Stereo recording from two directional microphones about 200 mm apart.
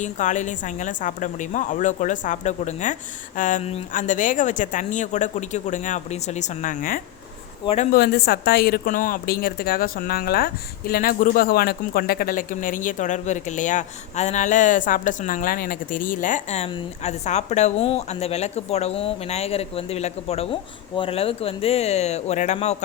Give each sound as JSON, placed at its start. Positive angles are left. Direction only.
{"t": 0.0, "sound": "speech", "side_deg": 40}
{"t": 7.6, "sound": "a man's voice", "side_deg": 30}
{"t": 7.9, "sound": "speech", "side_deg": 50}